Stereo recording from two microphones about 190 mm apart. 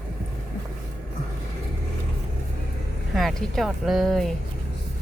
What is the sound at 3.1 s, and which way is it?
Speech, centre (ahead or behind).